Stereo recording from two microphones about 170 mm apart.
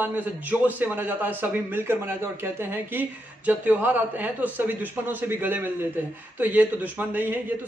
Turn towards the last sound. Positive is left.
turn(degrees=-10)  # may be behind; listen again after turning